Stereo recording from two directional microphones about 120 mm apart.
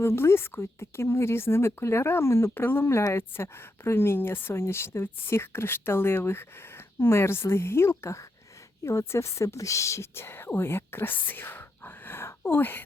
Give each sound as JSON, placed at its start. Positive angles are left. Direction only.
{"t": 0.0, "sound": "a woman's voice", "side_deg": 20}